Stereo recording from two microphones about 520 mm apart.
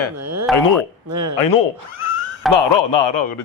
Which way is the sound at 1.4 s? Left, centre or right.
Left.